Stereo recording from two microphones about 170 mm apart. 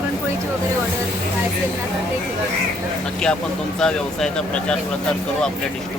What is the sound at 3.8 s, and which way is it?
Speech, 5° left (ahead or behind).